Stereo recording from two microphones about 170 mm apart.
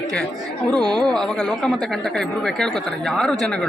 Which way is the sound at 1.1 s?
5° left (ahead or behind).